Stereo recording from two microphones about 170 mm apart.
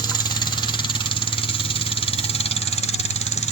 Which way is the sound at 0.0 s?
25° left (ahead or behind).